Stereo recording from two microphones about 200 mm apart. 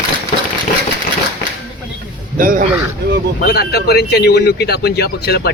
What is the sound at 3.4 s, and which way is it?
Speech, 50° left (ahead or behind).